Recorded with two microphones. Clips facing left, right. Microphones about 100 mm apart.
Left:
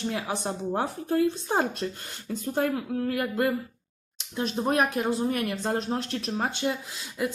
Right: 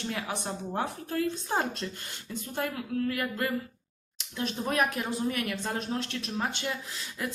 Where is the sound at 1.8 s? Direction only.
45° left (ahead or behind).